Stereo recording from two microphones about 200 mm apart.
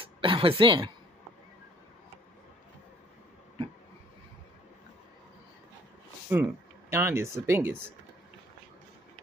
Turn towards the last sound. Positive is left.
turn(degrees=-10)  # may be behind; listen again after turning